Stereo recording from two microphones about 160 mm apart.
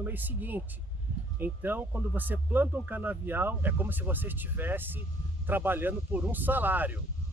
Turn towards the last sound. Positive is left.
turn(degrees=-10)  # may be behind; listen again after turning